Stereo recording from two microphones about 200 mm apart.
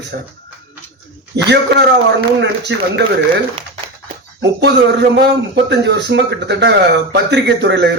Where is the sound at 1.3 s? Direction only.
55° right (ahead or behind).